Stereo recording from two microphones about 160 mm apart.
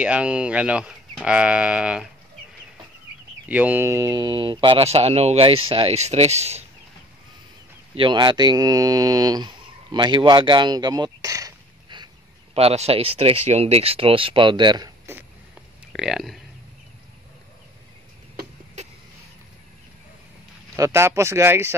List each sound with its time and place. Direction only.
0.0 s speech: 5° right (ahead or behind)
3.4 s speech: 10° right (ahead or behind); by 6.6 s 45° right (ahead or behind)
7.9 s speech: 30° right (ahead or behind)
12.5 s speech: 40° right (ahead or behind)
15.9 s speech: centre (ahead or behind)
18.8 s a sound: 45° right (ahead or behind)
20.7 s speech: 20° right (ahead or behind)